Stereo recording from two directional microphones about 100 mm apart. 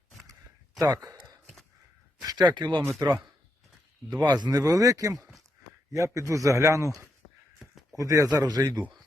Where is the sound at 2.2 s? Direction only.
45° right (ahead or behind).